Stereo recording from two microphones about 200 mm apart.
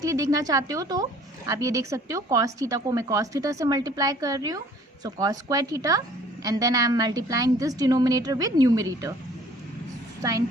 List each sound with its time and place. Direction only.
0.0 s a woman's voice: 15° right (ahead or behind)
10.2 s a woman's voice: 15° right (ahead or behind)